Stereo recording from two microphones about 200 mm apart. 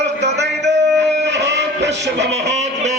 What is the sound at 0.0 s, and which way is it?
Music, 60° right (ahead or behind).